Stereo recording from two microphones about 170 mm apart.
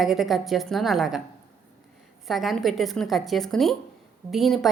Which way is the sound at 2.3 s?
Centre (ahead or behind).